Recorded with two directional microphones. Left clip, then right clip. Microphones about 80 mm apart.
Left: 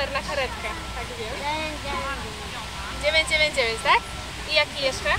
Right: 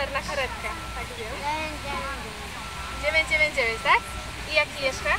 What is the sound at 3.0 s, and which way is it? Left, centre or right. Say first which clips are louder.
Speech: left 1 dB; centre.